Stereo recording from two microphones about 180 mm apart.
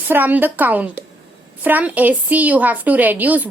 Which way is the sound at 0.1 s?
10° right (ahead or behind).